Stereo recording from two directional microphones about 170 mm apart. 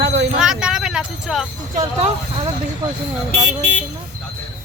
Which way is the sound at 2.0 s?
35° right (ahead or behind).